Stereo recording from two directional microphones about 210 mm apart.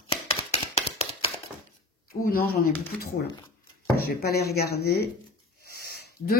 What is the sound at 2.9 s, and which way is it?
Speech, 5° left (ahead or behind).